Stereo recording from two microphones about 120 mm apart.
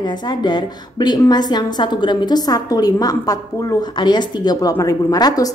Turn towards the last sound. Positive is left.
turn(degrees=30)  # may be behind; listen again after turning